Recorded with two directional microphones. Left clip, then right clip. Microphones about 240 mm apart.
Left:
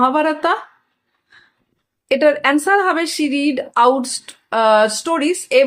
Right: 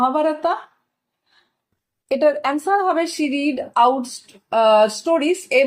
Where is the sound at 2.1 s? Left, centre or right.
Left.